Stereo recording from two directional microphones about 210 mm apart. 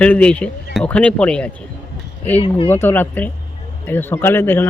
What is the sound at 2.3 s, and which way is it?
Speech, 25° left (ahead or behind).